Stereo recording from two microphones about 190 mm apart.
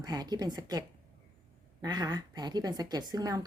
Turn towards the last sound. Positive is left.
turn(degrees=-20)  # may be behind; listen again after turning